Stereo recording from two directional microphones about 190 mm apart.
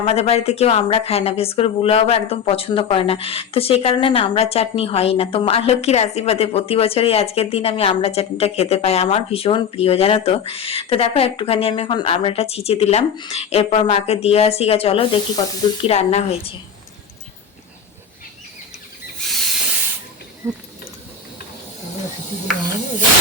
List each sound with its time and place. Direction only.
0.0 s speech: 30° left (ahead or behind)
19.2 s a sound: centre (ahead or behind)
20.4 s speech: 15° right (ahead or behind)